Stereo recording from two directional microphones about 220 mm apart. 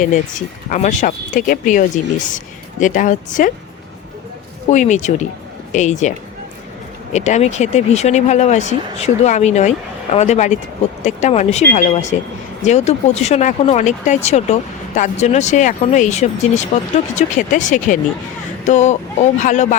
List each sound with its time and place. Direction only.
0.0 s speech: 35° left (ahead or behind)
4.7 s speech: 35° left (ahead or behind)